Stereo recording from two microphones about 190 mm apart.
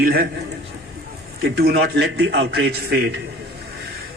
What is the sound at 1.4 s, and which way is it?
Speech, 60° right (ahead or behind).